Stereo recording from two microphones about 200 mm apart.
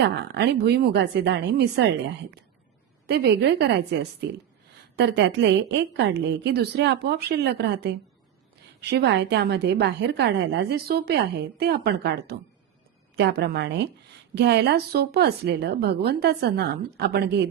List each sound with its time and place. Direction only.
0.0 s a woman's voice: 55° right (ahead or behind)
3.1 s a woman's voice: 55° right (ahead or behind)